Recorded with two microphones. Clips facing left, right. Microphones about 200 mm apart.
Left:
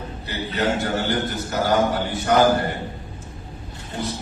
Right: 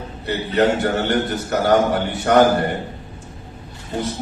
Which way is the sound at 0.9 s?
65° right (ahead or behind).